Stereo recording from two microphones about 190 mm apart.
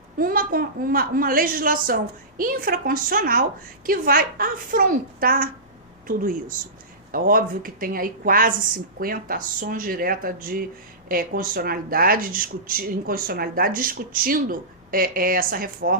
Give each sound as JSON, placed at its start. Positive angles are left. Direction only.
{"t": 0.2, "sound": "speech", "side_deg": -50}
{"t": 7.1, "sound": "speech", "side_deg": -50}